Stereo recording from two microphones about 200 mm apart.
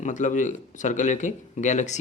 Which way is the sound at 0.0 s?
40° left (ahead or behind).